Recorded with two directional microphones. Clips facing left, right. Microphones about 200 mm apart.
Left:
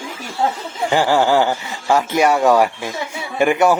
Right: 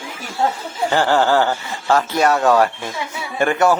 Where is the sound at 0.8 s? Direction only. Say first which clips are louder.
Left 1 dB; 10° left (ahead or behind).